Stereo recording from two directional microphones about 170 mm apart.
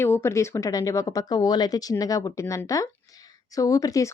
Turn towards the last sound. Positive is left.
turn(degrees=20)  # may be behind; listen again after turning